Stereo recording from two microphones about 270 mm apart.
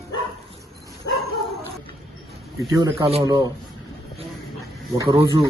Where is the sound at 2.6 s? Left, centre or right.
Centre.